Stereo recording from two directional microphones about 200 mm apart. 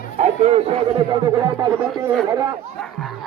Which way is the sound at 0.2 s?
35° right (ahead or behind).